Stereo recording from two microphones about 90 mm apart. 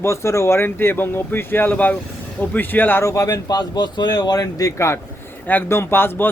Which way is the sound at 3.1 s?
40° left (ahead or behind).